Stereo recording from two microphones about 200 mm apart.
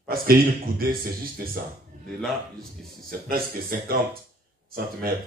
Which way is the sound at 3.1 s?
45° right (ahead or behind).